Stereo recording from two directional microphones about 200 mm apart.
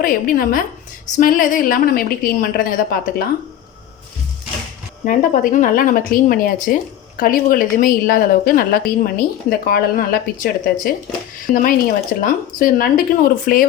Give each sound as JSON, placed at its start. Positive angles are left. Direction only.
{"t": 0.0, "sound": "a woman's voice", "side_deg": 45}
{"t": 5.0, "sound": "a woman's voice", "side_deg": 40}